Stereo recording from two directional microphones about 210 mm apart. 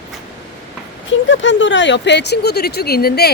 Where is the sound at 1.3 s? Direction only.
60° left (ahead or behind).